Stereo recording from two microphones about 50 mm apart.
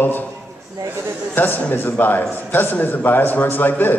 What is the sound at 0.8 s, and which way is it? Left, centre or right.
Speech, right.